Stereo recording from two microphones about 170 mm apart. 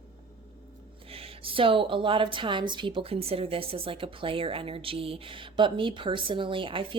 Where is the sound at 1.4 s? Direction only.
30° right (ahead or behind).